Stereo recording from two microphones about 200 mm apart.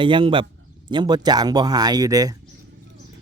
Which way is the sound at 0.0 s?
25° right (ahead or behind).